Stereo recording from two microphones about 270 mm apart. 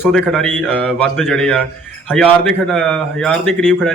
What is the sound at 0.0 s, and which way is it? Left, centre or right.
Speech, centre.